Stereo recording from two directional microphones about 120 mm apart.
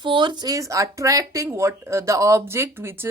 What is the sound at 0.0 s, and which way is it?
Speech, 40° right (ahead or behind).